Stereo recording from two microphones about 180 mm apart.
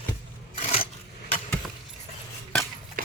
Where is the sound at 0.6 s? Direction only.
35° left (ahead or behind).